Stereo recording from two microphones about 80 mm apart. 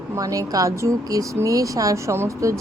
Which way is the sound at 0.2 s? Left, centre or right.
Right.